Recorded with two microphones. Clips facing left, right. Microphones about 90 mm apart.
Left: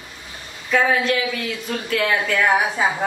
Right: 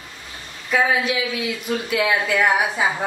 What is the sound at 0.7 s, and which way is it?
Speech, 5° right (ahead or behind).